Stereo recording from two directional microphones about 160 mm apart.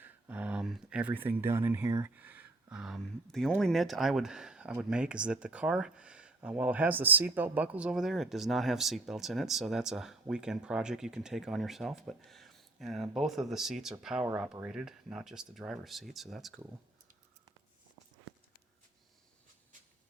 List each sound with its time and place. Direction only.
0.0 s speech: 10° right (ahead or behind)
2.1 s speech: 10° right (ahead or behind)